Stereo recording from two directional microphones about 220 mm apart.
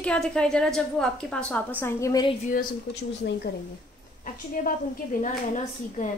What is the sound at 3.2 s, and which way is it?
Speech, 50° left (ahead or behind).